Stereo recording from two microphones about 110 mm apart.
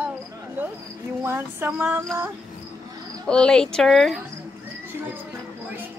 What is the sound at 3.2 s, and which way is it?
Speech, 5° left (ahead or behind).